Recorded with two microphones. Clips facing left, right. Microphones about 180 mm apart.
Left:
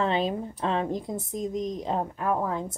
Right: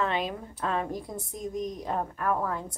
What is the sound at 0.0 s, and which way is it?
A woman's voice, 25° left (ahead or behind).